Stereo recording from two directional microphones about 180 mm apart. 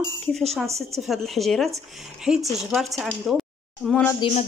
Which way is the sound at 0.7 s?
Centre (ahead or behind).